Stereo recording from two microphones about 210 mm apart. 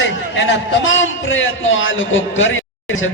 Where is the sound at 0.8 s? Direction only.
65° left (ahead or behind).